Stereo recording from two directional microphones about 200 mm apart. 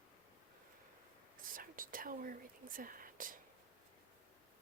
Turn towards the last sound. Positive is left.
turn(degrees=-45)  # may be behind; listen again after turning